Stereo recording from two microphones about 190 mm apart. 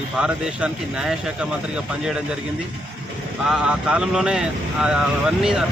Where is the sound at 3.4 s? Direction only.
5° right (ahead or behind).